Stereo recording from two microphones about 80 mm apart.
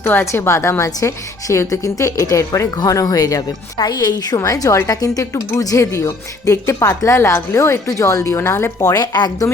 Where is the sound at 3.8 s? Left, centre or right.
Left.